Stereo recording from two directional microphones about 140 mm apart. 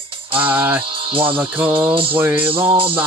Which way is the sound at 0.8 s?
40° right (ahead or behind).